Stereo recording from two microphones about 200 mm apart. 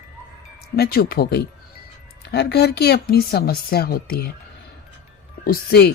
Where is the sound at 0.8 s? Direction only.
50° left (ahead or behind).